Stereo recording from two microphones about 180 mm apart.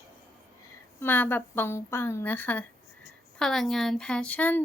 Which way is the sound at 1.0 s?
10° left (ahead or behind).